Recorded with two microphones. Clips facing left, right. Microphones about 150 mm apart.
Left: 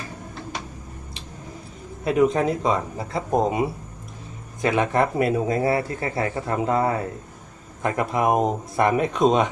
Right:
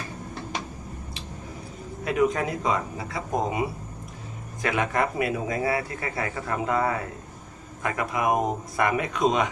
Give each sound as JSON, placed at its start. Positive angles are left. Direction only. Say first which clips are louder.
{"t": 2.0, "sound": "speech", "louder": "left 4 dB", "side_deg": 25}
{"t": 4.6, "sound": "speech", "louder": "left 5 dB", "side_deg": 25}